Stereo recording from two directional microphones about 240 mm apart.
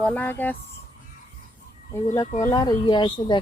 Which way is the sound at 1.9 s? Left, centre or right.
Centre.